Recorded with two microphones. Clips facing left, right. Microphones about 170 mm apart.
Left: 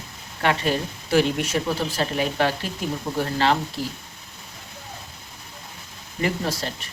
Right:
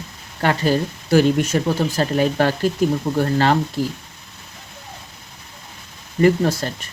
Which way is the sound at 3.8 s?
45° right (ahead or behind).